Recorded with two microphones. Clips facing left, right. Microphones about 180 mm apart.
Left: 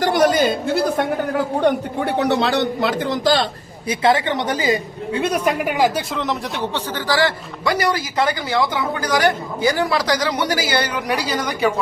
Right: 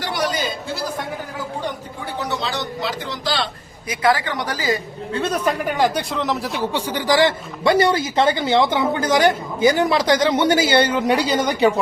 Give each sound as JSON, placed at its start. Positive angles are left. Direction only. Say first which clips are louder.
{"t": 0.0, "sound": "a man's voice", "louder": "left 8 dB", "side_deg": 50}
{"t": 3.8, "sound": "a woman's voice", "louder": "left 2 dB", "side_deg": 25}
{"t": 6.7, "sound": "a woman's voice", "louder": "right 3 dB", "side_deg": -15}